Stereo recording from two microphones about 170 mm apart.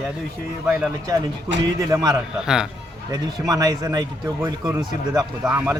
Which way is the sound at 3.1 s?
20° right (ahead or behind).